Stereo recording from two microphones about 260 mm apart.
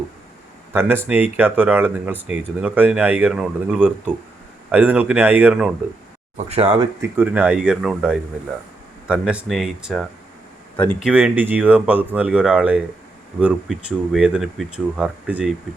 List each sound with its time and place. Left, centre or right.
0.7 s speech: centre
6.3 s speech: right
7.0 s speech: centre